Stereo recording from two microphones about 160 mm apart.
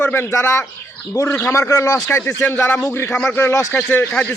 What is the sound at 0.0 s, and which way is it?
A man's voice, 10° left (ahead or behind).